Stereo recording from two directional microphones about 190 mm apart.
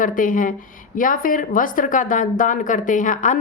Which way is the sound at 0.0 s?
45° left (ahead or behind).